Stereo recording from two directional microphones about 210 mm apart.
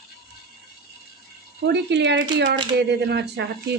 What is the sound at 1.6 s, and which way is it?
Speech, 55° right (ahead or behind).